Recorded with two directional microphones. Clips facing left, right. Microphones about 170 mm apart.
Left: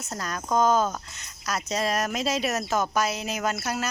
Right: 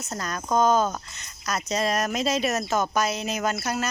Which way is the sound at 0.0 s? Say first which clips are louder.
Right 1 dB; 5° left (ahead or behind).